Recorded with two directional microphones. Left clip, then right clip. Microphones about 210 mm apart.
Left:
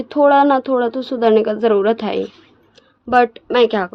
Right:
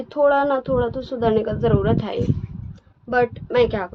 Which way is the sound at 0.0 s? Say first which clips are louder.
Left 5 dB; 55° left (ahead or behind).